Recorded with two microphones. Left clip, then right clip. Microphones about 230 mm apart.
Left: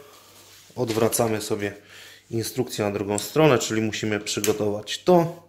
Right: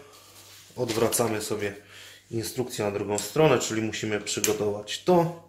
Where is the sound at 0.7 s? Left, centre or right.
Left.